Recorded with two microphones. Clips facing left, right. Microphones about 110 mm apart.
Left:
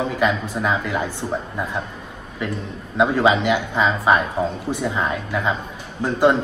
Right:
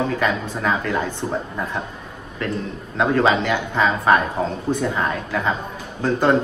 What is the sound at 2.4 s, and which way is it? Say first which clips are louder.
Speech: right 2 dB; 15° left (ahead or behind).